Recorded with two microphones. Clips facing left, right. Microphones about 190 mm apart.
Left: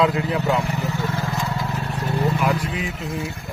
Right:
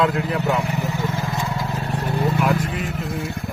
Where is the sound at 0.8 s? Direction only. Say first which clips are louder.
Right 1 dB; 15° right (ahead or behind).